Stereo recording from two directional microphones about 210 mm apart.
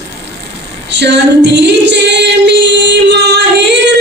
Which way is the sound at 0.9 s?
55° right (ahead or behind).